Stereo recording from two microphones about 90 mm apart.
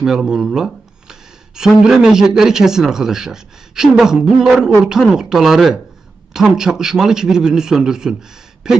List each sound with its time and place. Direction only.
0.0 s speech: 5° right (ahead or behind)